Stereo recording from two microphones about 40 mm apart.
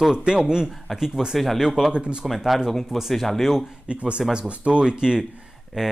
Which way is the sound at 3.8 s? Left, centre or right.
Right.